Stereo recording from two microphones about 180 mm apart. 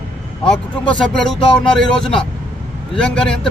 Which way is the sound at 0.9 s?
5° left (ahead or behind).